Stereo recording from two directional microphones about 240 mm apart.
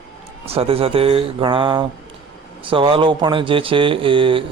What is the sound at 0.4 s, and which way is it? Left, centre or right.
Speech, right.